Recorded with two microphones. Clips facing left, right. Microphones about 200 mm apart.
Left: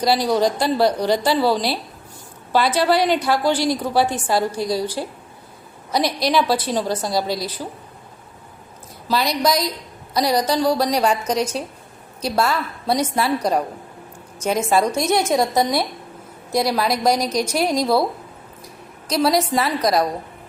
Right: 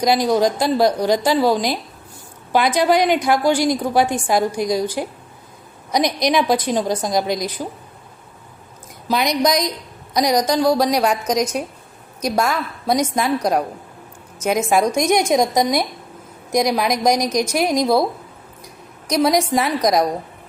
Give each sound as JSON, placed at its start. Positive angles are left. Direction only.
{"t": 0.0, "sound": "a woman's voice", "side_deg": -15}
{"t": 9.0, "sound": "a woman's voice", "side_deg": -20}
{"t": 12.2, "sound": "a woman's voice", "side_deg": -10}
{"t": 19.0, "sound": "a woman's voice", "side_deg": -15}